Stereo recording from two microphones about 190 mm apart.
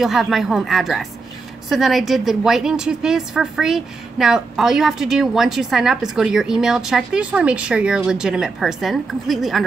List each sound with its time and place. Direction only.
0.0 s a woman's voice: centre (ahead or behind)